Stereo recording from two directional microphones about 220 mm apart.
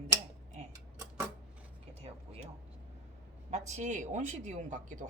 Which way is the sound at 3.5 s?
30° right (ahead or behind).